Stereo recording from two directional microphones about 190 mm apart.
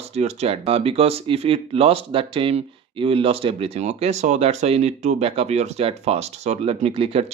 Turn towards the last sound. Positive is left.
turn(degrees=-30)  # may be behind; listen again after turning